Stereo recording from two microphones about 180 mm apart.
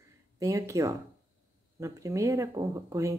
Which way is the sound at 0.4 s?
20° right (ahead or behind).